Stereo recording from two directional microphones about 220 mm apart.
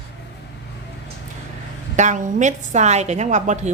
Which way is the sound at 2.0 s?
35° right (ahead or behind).